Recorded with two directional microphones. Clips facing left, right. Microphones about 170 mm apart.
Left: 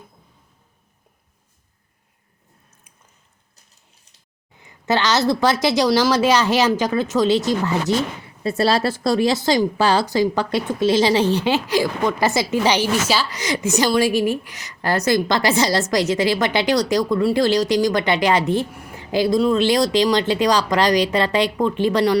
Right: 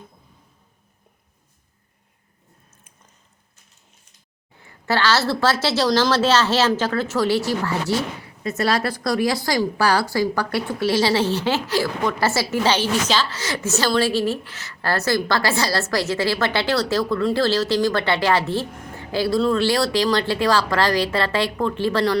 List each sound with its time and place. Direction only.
4.6 s a woman's voice: 20° left (ahead or behind)
8.4 s a woman's voice: 30° left (ahead or behind)